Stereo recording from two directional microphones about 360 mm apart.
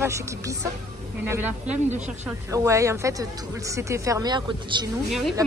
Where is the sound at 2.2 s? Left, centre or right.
Centre.